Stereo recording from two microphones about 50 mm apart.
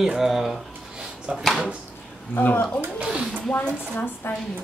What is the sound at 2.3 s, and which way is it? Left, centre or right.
Speech, left.